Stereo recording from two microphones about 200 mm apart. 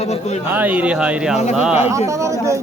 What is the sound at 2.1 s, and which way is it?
Speech, 15° right (ahead or behind).